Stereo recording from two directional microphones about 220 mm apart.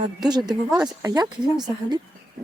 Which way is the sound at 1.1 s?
20° right (ahead or behind).